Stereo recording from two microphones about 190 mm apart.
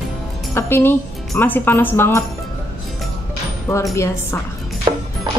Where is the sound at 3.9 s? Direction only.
15° left (ahead or behind).